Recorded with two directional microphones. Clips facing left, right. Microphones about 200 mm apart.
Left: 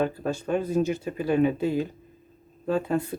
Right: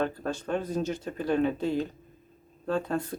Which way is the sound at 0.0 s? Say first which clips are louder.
Left 3 dB; 10° left (ahead or behind).